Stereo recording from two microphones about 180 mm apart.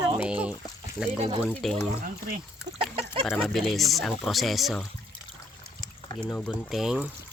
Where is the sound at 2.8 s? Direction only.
30° right (ahead or behind).